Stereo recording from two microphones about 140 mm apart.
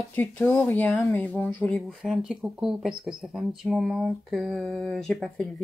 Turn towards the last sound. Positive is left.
turn(degrees=5)  # may be behind; listen again after turning